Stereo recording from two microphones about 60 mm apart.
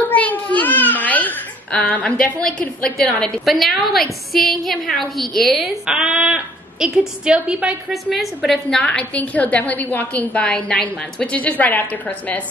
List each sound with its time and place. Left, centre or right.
0.1 s babbling: left
3.4 s a woman's voice: centre
5.9 s a woman's voice: centre
7.9 s a woman's voice: centre
8.6 s a woman's voice: centre
11.3 s a woman's voice: left